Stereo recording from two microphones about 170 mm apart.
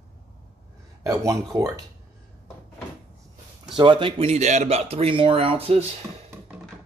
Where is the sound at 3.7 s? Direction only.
30° right (ahead or behind).